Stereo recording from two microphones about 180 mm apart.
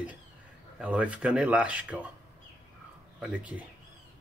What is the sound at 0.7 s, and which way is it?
Speech, 5° right (ahead or behind).